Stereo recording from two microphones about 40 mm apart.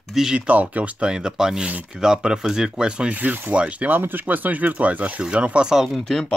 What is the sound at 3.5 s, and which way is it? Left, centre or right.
Speech, right.